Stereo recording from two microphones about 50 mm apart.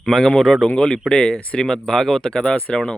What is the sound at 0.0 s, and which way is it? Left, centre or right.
Speech, centre.